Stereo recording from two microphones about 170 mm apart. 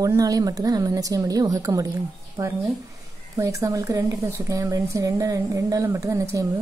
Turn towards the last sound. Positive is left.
turn(degrees=-15)  # may be behind; listen again after turning